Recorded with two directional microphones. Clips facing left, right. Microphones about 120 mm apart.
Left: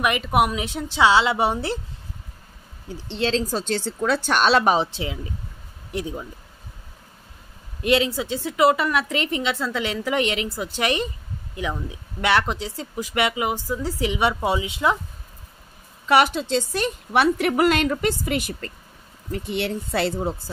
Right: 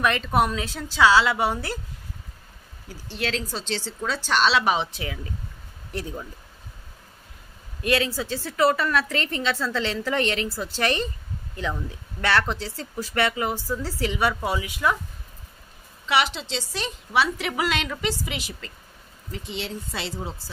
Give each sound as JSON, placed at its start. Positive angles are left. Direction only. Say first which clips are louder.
{"t": 0.0, "sound": "a woman's voice", "louder": "left 2 dB", "side_deg": 15}
{"t": 2.9, "sound": "a woman's voice", "louder": "left 6 dB", "side_deg": 25}
{"t": 3.4, "sound": "a woman's voice", "louder": "left 6 dB", "side_deg": 45}
{"t": 4.9, "sound": "a woman's voice", "louder": "left 3 dB", "side_deg": 25}
{"t": 7.8, "sound": "speech", "louder": "left 3 dB", "side_deg": 20}
{"t": 16.1, "sound": "a woman's voice", "louder": "left 6 dB", "side_deg": 50}